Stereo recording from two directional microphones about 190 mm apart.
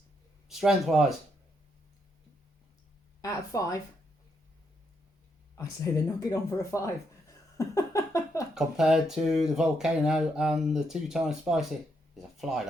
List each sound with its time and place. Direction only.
0.4 s speech: centre (ahead or behind)
3.2 s speech: 20° left (ahead or behind)
5.5 s speech: 15° left (ahead or behind)
7.6 s a sound: 15° left (ahead or behind)
8.5 s speech: 5° right (ahead or behind)